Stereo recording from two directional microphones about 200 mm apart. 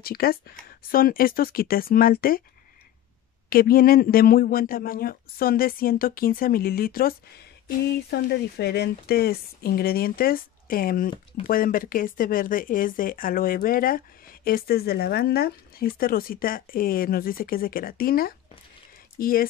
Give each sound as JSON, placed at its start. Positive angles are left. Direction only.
{"t": 0.0, "sound": "speech", "side_deg": 50}
{"t": 3.4, "sound": "speech", "side_deg": 45}